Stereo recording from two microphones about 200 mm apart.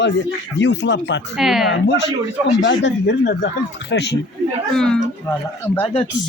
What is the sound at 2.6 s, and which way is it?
Speech, 65° left (ahead or behind).